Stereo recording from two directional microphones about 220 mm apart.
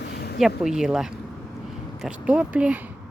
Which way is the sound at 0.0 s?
45° left (ahead or behind).